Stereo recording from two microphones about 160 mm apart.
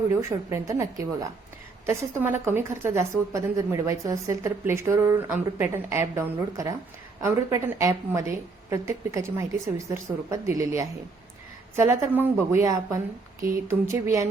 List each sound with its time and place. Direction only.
0.1 s a woman's voice: 15° right (ahead or behind)